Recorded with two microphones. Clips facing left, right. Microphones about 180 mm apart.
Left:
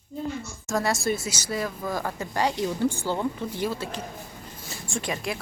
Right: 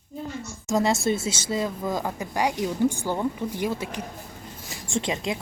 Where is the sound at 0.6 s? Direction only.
20° right (ahead or behind).